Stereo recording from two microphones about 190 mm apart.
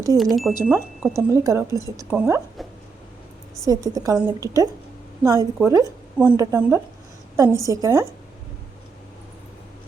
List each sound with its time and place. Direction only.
0.2 s speech: centre (ahead or behind)
0.5 s a woman's voice: 15° right (ahead or behind)
3.6 s a woman's voice: 20° right (ahead or behind)